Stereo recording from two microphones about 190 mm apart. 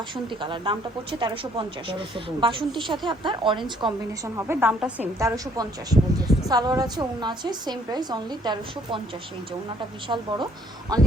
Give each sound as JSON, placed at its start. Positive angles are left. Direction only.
{"t": 0.4, "sound": "a woman's voice", "side_deg": -25}
{"t": 3.8, "sound": "a woman's voice", "side_deg": 0}
{"t": 5.3, "sound": "a woman's voice", "side_deg": -20}
{"t": 10.1, "sound": "a woman's voice", "side_deg": -25}